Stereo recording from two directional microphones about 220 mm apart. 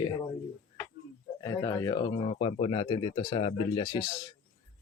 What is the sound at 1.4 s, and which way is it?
Speech, 15° left (ahead or behind).